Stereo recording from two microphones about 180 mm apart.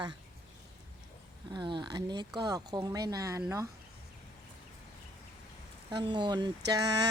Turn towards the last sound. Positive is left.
turn(degrees=-20)  # may be behind; listen again after turning